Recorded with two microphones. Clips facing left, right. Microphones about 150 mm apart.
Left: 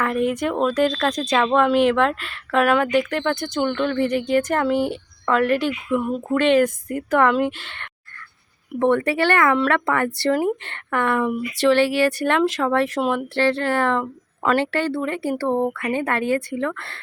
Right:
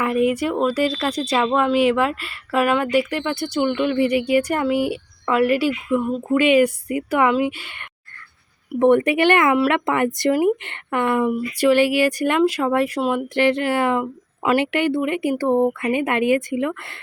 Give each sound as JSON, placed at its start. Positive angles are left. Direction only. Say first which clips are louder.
{"t": 0.0, "sound": "speech", "louder": "right 2 dB", "side_deg": -5}